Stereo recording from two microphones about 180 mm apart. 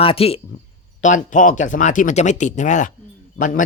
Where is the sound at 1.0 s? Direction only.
45° left (ahead or behind).